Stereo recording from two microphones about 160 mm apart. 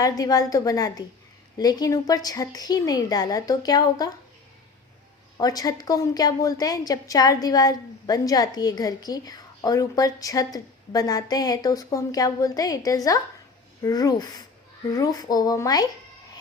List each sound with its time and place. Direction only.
0.0 s a woman's voice: 25° left (ahead or behind)
5.4 s a woman's voice: 25° left (ahead or behind)